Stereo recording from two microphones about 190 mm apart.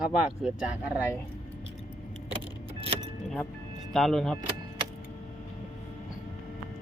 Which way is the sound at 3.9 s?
Centre (ahead or behind).